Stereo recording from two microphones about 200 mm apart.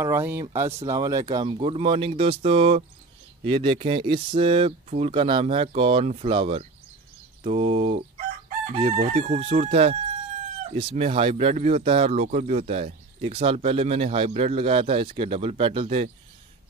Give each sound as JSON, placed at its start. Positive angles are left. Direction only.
{"t": 0.0, "sound": "speech", "side_deg": -10}